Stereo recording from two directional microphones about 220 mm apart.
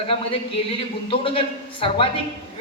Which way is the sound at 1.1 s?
25° left (ahead or behind).